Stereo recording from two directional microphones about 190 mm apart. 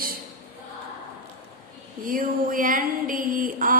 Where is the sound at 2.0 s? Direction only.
45° right (ahead or behind).